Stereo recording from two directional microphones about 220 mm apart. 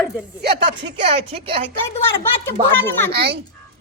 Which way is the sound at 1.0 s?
25° right (ahead or behind).